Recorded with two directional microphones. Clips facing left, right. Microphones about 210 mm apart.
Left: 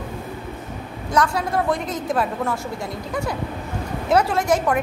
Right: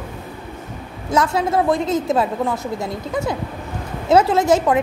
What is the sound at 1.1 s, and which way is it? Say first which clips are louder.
A woman's voice: right 3 dB; 25° right (ahead or behind).